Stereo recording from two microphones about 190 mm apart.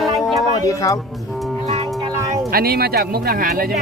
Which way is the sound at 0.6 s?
20° left (ahead or behind).